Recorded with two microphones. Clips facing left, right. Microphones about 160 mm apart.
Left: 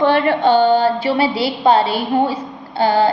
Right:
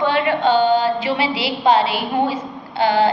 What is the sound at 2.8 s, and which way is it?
Speech, 35° left (ahead or behind).